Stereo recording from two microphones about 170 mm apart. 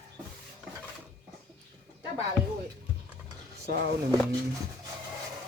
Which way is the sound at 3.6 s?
90° right.